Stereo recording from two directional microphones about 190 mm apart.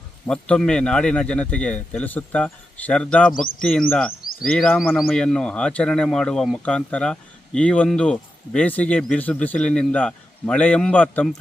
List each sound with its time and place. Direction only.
0.3 s speech: 5° left (ahead or behind)